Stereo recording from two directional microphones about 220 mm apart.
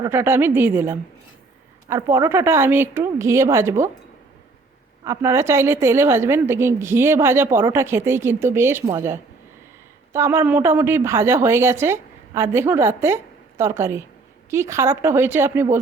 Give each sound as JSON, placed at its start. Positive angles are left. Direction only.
{"t": 0.0, "sound": "a woman's voice", "side_deg": -10}
{"t": 5.0, "sound": "a woman's voice", "side_deg": -15}